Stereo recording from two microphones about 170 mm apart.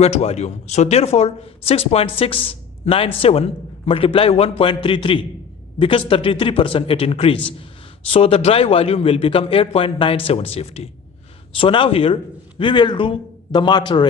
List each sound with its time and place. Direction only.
0.0 s a man's voice: 40° left (ahead or behind)